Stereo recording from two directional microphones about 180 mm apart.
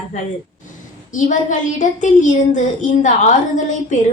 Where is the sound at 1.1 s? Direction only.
45° left (ahead or behind).